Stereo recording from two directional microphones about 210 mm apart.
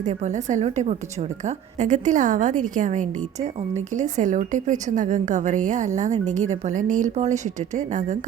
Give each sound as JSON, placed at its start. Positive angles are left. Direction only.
{"t": 0.0, "sound": "a woman's voice", "side_deg": -35}